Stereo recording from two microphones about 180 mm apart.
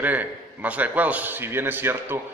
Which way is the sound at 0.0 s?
10° right (ahead or behind).